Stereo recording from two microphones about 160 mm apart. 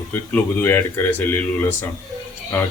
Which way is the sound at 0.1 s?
15° left (ahead or behind).